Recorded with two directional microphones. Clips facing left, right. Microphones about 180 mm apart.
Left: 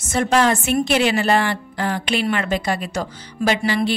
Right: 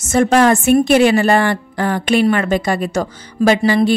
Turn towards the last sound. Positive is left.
turn(degrees=-45)  # may be behind; listen again after turning